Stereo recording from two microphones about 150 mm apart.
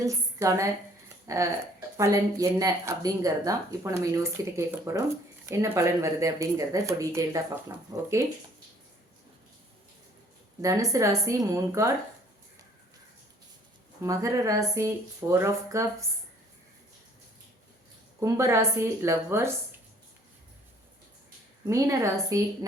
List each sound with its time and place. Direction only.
0.0 s speech: 20° right (ahead or behind)
10.6 s speech: 20° right (ahead or behind)
14.0 s speech: 20° right (ahead or behind)
18.2 s speech: 20° right (ahead or behind)
21.7 s speech: 20° right (ahead or behind)